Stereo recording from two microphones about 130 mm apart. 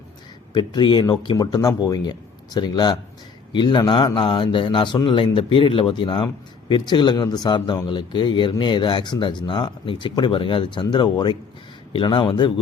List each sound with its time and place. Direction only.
0.5 s a man's voice: 35° left (ahead or behind)